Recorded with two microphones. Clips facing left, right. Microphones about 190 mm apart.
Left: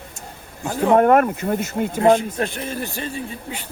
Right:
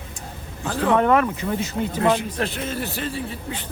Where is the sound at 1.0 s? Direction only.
45° left (ahead or behind).